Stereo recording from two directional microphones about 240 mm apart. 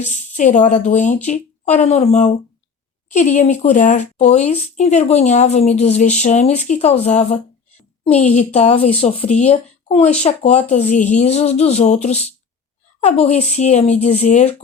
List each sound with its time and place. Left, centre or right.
0.1 s a woman's voice: left